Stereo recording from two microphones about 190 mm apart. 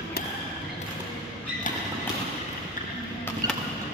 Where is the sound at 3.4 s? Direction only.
20° right (ahead or behind).